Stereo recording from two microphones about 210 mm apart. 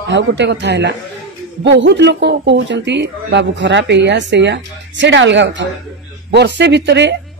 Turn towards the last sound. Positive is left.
turn(degrees=-55)  # may be behind; listen again after turning